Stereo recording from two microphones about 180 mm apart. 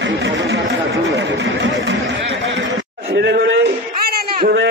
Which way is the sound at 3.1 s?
70° right (ahead or behind).